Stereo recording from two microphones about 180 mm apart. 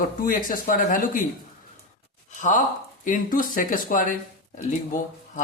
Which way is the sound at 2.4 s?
45° left (ahead or behind).